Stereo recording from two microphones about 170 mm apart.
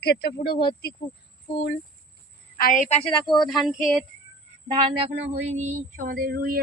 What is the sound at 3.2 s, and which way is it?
Speech, 25° left (ahead or behind).